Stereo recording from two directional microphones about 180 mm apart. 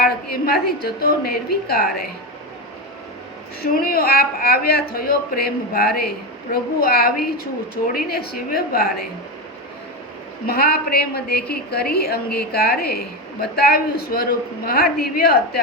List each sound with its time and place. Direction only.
0.0 s a sound: 55° left (ahead or behind)
1.3 s a woman's voice: 55° left (ahead or behind)
3.6 s a woman's voice: 55° left (ahead or behind)
10.4 s a woman's voice: 60° left (ahead or behind)